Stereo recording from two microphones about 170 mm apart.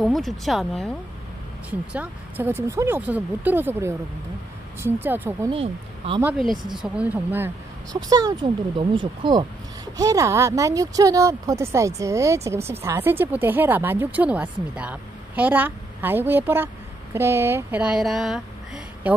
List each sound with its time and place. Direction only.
0.0 s speech: centre (ahead or behind)
5.5 s speech: 30° right (ahead or behind)
6.3 s speech: centre (ahead or behind)
7.9 s speech: 20° right (ahead or behind)